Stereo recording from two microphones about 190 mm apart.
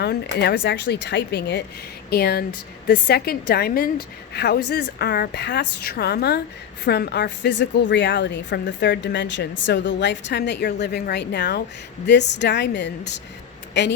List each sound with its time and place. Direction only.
0.0 s a woman's voice: 60° left (ahead or behind)